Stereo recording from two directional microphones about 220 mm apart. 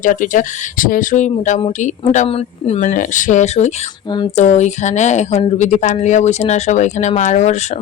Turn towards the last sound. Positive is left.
turn(degrees=30)  # may be behind; listen again after turning